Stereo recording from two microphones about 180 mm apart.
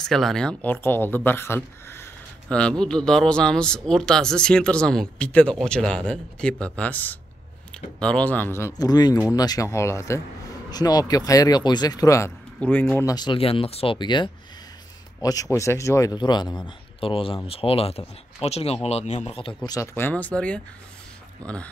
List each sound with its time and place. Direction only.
0.0 s speech: centre (ahead or behind); by 12.3 s 20° left (ahead or behind)
12.5 s speech: 10° left (ahead or behind)
13.1 s a man's voice: 25° left (ahead or behind); by 21.6 s 5° left (ahead or behind)